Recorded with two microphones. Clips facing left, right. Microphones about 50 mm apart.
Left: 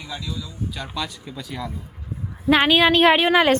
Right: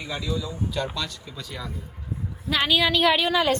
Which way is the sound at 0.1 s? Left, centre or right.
Centre.